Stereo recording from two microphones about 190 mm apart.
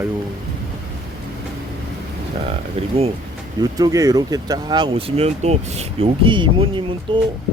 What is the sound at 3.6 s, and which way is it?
Speech, 20° right (ahead or behind).